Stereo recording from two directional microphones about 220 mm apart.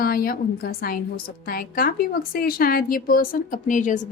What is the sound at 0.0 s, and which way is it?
A woman's voice, 40° left (ahead or behind).